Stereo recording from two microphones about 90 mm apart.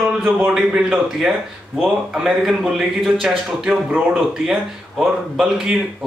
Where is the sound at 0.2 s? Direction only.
15° right (ahead or behind).